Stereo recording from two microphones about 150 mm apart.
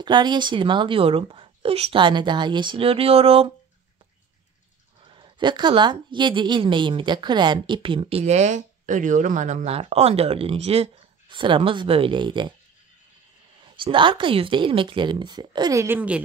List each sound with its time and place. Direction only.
0.0 s a woman's voice: 30° right (ahead or behind)
5.0 s a woman's voice: 35° right (ahead or behind); by 9.8 s 55° right (ahead or behind)
9.8 s a woman's voice: 40° right (ahead or behind)
13.6 s a woman's voice: 35° right (ahead or behind); by 16.2 s 10° right (ahead or behind)